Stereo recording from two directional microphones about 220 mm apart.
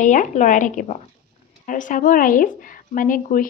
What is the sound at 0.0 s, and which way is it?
Speech, 35° left (ahead or behind).